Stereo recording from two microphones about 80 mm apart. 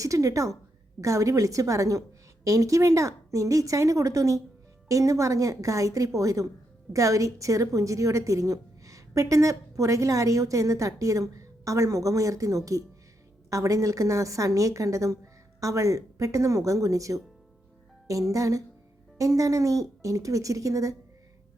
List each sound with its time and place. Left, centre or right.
0.0 s a woman's voice: right